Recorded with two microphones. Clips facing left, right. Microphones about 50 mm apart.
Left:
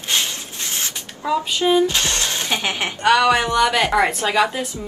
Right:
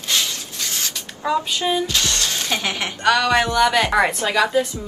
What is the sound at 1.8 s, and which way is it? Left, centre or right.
A woman's voice, left.